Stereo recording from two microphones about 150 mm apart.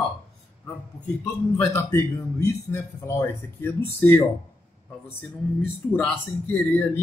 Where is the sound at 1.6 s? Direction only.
15° left (ahead or behind).